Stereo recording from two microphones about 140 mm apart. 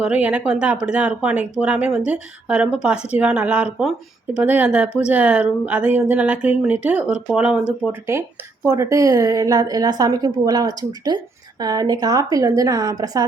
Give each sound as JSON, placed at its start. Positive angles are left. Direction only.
{"t": 0.0, "sound": "speech", "side_deg": -10}
{"t": 7.9, "sound": "a woman's voice", "side_deg": -20}